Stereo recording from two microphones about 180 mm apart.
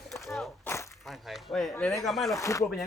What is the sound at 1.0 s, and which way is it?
Speech, centre (ahead or behind).